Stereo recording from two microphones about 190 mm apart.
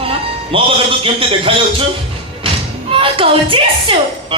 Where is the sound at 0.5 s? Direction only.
30° right (ahead or behind).